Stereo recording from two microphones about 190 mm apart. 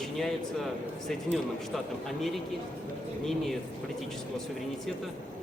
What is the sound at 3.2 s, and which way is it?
Speech, centre (ahead or behind).